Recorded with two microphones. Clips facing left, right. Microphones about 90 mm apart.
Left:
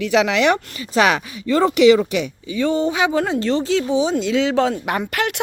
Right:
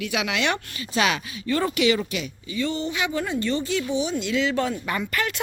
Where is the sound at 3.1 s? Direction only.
90° left.